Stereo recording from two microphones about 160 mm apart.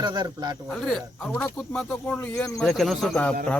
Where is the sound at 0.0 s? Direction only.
25° right (ahead or behind).